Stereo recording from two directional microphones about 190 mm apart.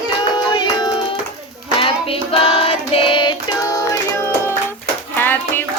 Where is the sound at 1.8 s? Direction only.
30° left (ahead or behind); by 5.6 s 10° left (ahead or behind).